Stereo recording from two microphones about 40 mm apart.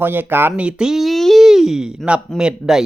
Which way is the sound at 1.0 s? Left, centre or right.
Centre.